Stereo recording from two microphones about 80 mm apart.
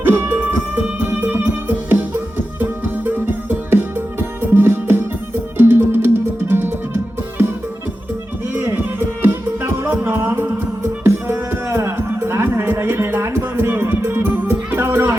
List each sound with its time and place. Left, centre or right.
0.0 s music: right
8.7 s music: right